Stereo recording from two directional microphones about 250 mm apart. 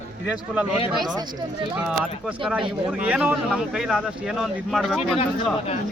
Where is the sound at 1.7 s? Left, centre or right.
Centre.